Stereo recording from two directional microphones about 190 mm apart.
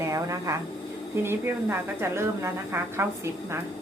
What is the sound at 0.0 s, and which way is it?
A woman's voice, 15° right (ahead or behind).